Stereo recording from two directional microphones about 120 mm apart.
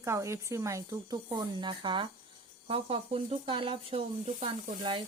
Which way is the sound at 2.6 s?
55° right (ahead or behind).